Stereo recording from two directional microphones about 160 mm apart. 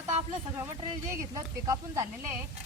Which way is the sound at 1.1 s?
20° right (ahead or behind).